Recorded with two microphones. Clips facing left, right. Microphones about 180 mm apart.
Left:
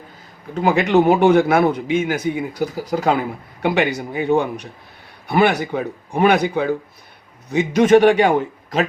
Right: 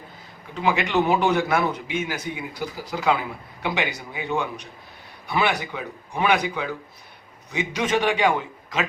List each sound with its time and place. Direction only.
0.5 s a man's voice: 45° left (ahead or behind)